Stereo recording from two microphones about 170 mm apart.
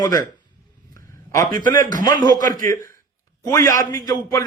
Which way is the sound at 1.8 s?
50° right (ahead or behind).